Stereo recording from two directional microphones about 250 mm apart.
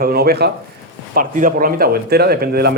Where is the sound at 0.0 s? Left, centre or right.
Right.